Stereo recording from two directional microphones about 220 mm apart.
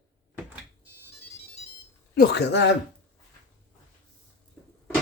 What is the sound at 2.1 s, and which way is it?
Speech, 50° left (ahead or behind).